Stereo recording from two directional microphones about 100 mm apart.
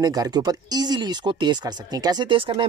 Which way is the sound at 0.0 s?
40° right (ahead or behind).